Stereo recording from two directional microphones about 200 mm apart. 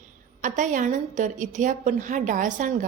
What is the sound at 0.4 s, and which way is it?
A woman's voice, 40° right (ahead or behind).